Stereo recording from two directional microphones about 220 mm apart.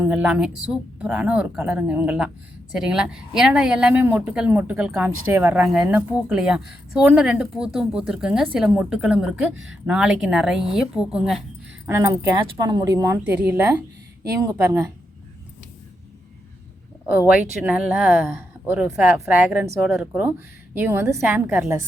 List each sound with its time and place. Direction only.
0.0 s a woman's voice: 5° right (ahead or behind)
11.9 s speech: 15° right (ahead or behind)
17.1 s a woman's voice: 5° right (ahead or behind)